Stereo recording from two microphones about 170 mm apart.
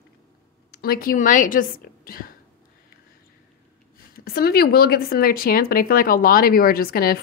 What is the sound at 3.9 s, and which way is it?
Speech, 60° left (ahead or behind).